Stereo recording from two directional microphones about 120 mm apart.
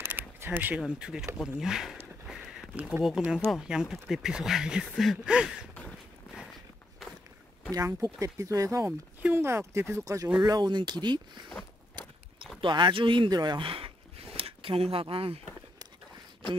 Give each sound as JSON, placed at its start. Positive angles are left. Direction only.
{"t": 0.1, "sound": "speech", "side_deg": -15}
{"t": 2.2, "sound": "a sound", "side_deg": 0}
{"t": 2.7, "sound": "speech", "side_deg": -10}
{"t": 7.7, "sound": "speech", "side_deg": -30}
{"t": 12.5, "sound": "speech", "side_deg": -40}